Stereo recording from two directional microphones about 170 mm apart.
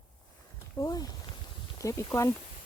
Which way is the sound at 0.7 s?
20° left (ahead or behind).